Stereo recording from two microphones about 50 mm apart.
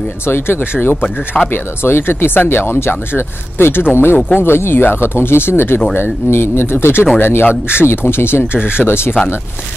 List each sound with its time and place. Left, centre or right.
0.3 s speech: left
1.5 s speech: left